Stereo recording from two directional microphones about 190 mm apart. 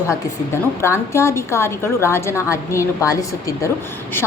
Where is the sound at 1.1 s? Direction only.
15° left (ahead or behind).